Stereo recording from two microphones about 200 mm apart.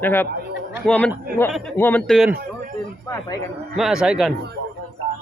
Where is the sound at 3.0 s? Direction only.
15° left (ahead or behind).